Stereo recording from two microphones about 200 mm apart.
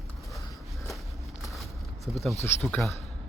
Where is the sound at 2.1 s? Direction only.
Centre (ahead or behind).